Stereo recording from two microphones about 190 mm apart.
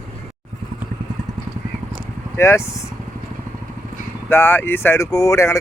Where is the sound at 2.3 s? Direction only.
15° left (ahead or behind).